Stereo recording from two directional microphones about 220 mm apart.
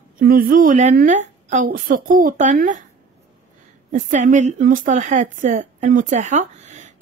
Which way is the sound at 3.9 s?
35° right (ahead or behind).